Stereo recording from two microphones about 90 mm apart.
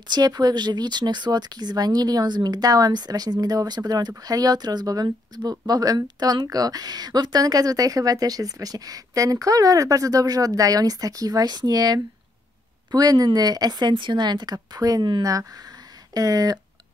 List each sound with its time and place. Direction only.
0.1 s speech: 50° right (ahead or behind)